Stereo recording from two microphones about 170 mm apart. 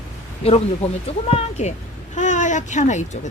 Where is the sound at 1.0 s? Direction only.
40° left (ahead or behind).